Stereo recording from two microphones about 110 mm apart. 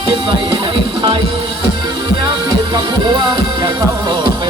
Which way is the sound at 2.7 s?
45° right (ahead or behind).